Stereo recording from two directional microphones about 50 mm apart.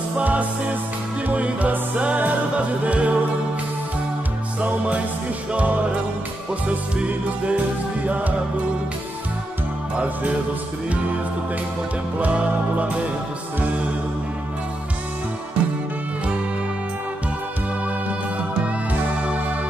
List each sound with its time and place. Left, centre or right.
0.2 s music: right
4.6 s music: right
7.1 s music: right
12.2 s music: right